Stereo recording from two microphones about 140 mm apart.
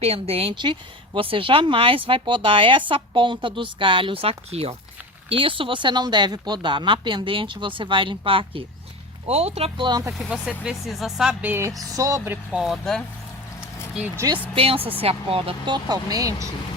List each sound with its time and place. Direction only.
0.0 s speech: 45° right (ahead or behind)
10.2 s speech: 5° right (ahead or behind)
11.9 s speech: 25° right (ahead or behind)
12.5 s speech: centre (ahead or behind)
14.5 s speech: 45° right (ahead or behind); by 16.5 s 25° right (ahead or behind)